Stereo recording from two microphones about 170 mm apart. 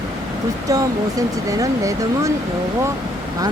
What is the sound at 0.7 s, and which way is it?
Speech, 20° right (ahead or behind).